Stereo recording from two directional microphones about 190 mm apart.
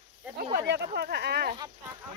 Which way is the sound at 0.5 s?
60° right (ahead or behind).